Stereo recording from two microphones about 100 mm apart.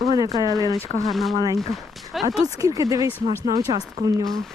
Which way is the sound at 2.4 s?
35° right (ahead or behind).